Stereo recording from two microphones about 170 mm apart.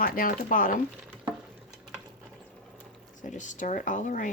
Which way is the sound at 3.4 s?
50° left (ahead or behind).